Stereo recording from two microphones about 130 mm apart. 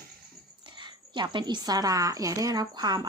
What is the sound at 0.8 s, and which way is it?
A woman's voice, 35° right (ahead or behind).